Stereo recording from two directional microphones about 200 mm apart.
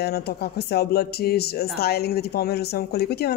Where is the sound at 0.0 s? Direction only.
50° left (ahead or behind).